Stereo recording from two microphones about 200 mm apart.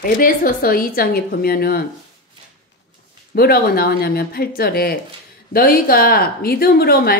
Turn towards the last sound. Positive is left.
turn(degrees=50)  # may be behind; listen again after turning